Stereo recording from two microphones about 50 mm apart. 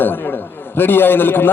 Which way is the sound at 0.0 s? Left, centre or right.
Left.